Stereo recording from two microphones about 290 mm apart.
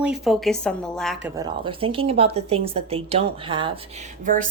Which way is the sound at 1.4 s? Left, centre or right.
Centre.